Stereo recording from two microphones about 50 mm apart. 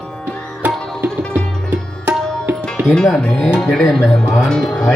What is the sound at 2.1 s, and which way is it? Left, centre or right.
Tabla, right.